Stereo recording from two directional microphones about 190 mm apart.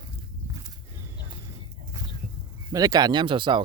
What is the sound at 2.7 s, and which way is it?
Speech, 20° right (ahead or behind).